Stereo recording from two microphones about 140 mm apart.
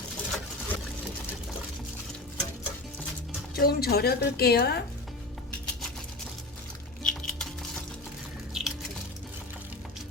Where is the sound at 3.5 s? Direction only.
90° left.